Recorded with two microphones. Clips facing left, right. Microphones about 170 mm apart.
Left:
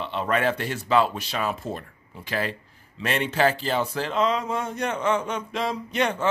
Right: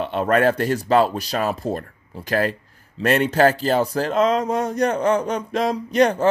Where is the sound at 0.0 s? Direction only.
45° right (ahead or behind).